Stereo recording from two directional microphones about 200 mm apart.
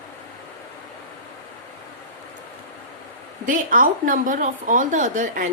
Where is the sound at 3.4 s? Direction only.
45° right (ahead or behind).